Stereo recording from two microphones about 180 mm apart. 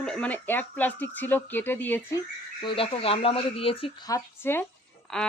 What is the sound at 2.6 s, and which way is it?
Speech, 30° left (ahead or behind).